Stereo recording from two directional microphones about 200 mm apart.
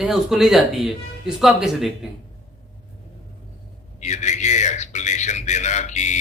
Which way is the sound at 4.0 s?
35° left (ahead or behind).